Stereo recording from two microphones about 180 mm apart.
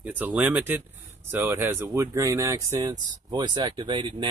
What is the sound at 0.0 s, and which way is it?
Speech, 10° right (ahead or behind).